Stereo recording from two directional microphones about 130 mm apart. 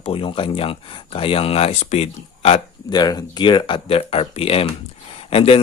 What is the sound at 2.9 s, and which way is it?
A man's voice, 30° left (ahead or behind).